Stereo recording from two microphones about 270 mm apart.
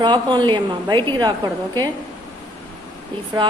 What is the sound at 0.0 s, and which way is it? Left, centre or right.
A woman's voice, centre.